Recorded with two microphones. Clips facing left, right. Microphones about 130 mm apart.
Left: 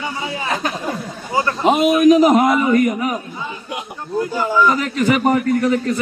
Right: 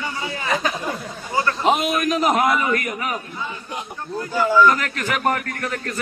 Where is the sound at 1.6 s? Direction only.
Centre (ahead or behind).